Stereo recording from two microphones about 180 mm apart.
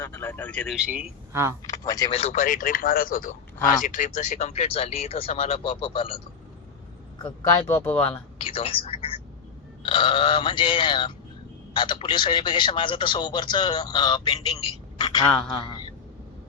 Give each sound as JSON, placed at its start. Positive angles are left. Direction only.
{"t": 0.0, "sound": "speech", "side_deg": 15}
{"t": 0.9, "sound": "a man's voice", "side_deg": -10}
{"t": 1.6, "sound": "speech", "side_deg": 20}
{"t": 2.0, "sound": "speech", "side_deg": 35}
{"t": 7.7, "sound": "speech", "side_deg": 10}
{"t": 8.4, "sound": "a sound", "side_deg": 30}
{"t": 9.8, "sound": "a man's voice", "side_deg": 30}
{"t": 15.5, "sound": "a sound", "side_deg": 25}